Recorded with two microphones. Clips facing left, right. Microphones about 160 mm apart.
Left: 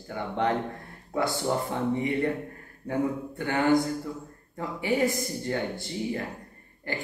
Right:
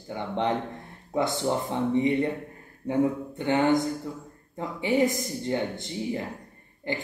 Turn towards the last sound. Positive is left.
turn(degrees=-20)  # may be behind; listen again after turning